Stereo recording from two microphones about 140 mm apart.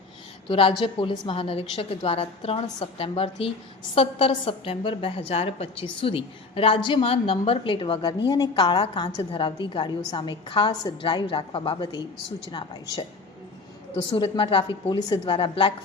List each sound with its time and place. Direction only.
0.4 s a woman's voice: 40° left (ahead or behind)
14.2 s a woman's voice: 40° left (ahead or behind)